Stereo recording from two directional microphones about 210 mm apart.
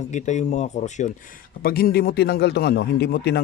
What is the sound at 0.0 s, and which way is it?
Speech, 35° left (ahead or behind).